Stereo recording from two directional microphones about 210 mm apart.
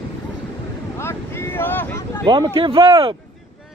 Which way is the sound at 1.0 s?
10° left (ahead or behind).